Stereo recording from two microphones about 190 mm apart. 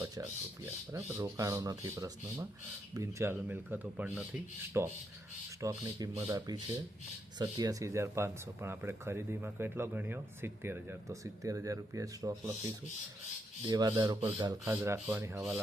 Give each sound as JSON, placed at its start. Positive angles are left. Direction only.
{"t": 0.0, "sound": "speech", "side_deg": -15}
{"t": 13.7, "sound": "speech", "side_deg": -20}